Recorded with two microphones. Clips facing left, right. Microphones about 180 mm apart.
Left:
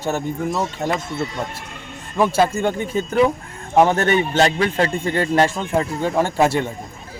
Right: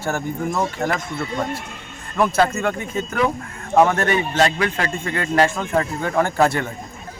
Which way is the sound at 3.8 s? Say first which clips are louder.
Left 2 dB; 25° left (ahead or behind).